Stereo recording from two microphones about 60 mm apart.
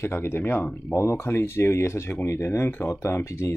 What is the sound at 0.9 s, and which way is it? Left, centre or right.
Speech, left.